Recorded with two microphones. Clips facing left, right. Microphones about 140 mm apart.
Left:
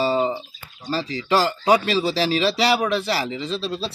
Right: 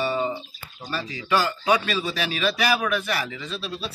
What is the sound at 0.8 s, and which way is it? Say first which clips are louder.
Speech: left 5 dB; 30° left (ahead or behind).